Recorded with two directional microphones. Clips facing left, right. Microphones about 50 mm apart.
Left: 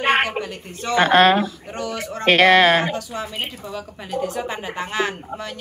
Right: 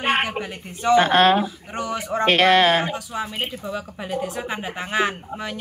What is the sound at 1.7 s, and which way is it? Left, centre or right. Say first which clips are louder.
Speech: right 1 dB; centre.